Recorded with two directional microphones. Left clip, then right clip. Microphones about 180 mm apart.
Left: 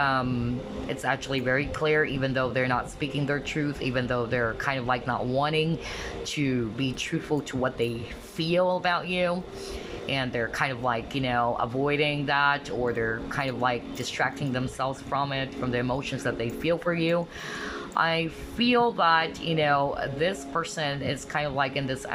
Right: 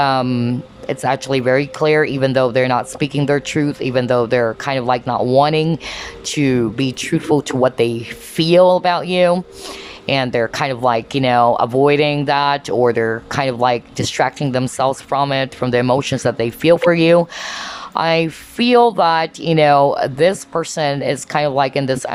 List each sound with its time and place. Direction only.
0.0 s speech: 30° right (ahead or behind)